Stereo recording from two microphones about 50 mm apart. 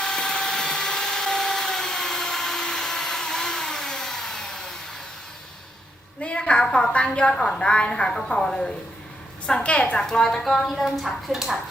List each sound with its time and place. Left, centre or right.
0.0 s a sound: centre
6.2 s a woman's voice: left
10.0 s a woman's voice: centre